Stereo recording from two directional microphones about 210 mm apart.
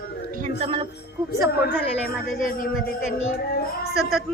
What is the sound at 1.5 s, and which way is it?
Speech, 50° left (ahead or behind).